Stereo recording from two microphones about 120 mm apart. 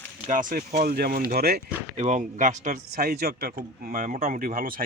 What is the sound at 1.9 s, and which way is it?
Speech, 90° right.